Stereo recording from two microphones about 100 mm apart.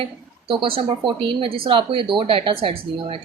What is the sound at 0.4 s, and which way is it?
A woman's voice, 60° right (ahead or behind).